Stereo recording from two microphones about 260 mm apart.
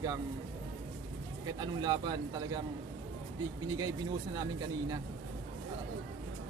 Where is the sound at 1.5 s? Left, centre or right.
Centre.